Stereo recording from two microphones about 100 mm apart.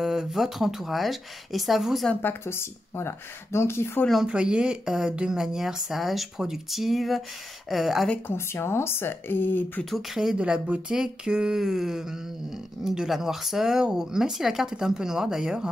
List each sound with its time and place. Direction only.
0.0 s speech: 5° right (ahead or behind)
2.2 s speech: 25° left (ahead or behind)
4.3 s speech: 10° right (ahead or behind)
8.4 s speech: 25° left (ahead or behind)
9.8 s speech: centre (ahead or behind)